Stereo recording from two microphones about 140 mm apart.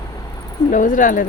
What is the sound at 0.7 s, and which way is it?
Speech, 65° left (ahead or behind).